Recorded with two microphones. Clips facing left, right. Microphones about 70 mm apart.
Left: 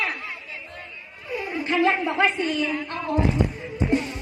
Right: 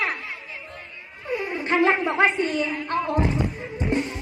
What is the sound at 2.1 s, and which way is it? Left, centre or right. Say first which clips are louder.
A woman's voice: right 1 dB; right.